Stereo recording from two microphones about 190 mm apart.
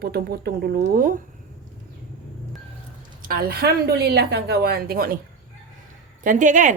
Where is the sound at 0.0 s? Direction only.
55° right (ahead or behind).